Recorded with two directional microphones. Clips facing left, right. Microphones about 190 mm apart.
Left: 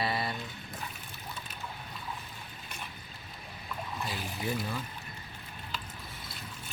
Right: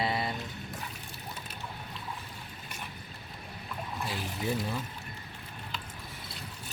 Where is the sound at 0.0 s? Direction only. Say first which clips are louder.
Right 1 dB; 20° right (ahead or behind).